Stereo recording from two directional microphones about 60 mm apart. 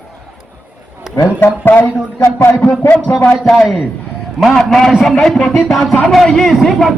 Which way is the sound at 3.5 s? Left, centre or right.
Centre.